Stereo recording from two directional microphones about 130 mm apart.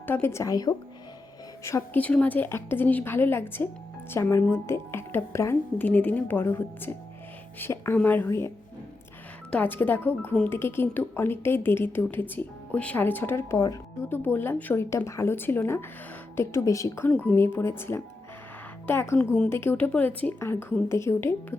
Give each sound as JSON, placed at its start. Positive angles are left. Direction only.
{"t": 0.1, "sound": "a woman's voice", "side_deg": 20}
{"t": 2.0, "sound": "a woman's voice", "side_deg": 10}